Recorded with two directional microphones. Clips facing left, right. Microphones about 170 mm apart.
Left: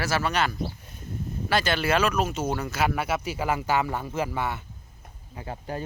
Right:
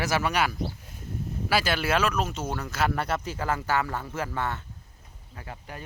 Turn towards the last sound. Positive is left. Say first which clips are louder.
# left 7 dB
turn(degrees=30)  # may be behind; listen again after turning